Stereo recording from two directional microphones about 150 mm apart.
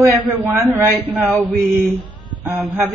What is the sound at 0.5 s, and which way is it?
Speech, 15° right (ahead or behind).